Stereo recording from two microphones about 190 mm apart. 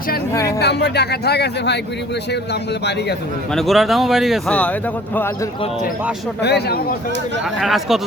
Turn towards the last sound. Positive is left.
turn(degrees=0)  # may be behind; listen again after turning